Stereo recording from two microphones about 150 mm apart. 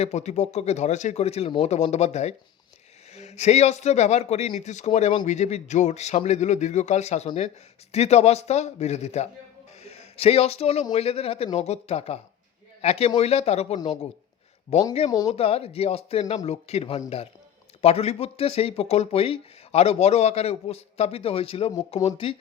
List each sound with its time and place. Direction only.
0.0 s a man's voice: 50° left (ahead or behind)